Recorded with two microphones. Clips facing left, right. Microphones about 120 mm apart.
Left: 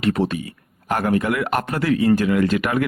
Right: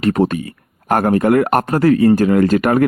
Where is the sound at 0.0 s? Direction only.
45° right (ahead or behind).